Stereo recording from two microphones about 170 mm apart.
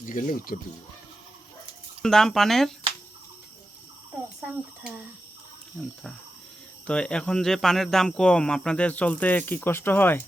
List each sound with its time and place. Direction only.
0.0 s speech: 50° left (ahead or behind)
2.0 s speech: centre (ahead or behind)
6.8 s speech: 5° left (ahead or behind)